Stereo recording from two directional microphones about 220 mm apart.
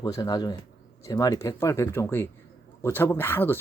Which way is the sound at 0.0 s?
15° left (ahead or behind).